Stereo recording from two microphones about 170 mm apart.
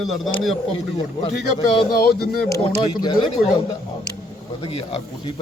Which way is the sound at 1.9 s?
65° left (ahead or behind).